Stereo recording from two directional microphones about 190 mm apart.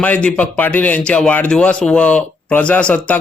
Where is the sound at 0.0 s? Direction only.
5° left (ahead or behind).